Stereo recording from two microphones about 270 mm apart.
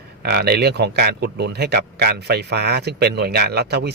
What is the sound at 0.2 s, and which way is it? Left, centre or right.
A man's voice, right.